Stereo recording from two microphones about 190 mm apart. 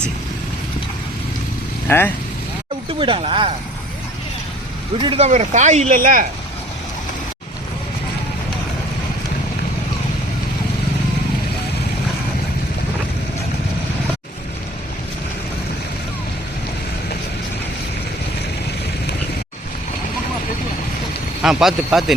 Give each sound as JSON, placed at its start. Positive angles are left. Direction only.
{"t": 1.9, "sound": "speech", "side_deg": 10}
{"t": 3.0, "sound": "speech", "side_deg": -25}
{"t": 4.9, "sound": "speech", "side_deg": -30}
{"t": 21.4, "sound": "speech", "side_deg": 0}